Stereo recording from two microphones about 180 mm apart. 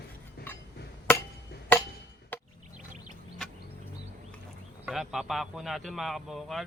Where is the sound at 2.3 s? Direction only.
10° left (ahead or behind).